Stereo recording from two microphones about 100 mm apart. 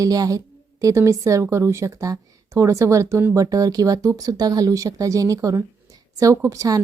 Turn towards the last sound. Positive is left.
turn(degrees=-35)  # may be behind; listen again after turning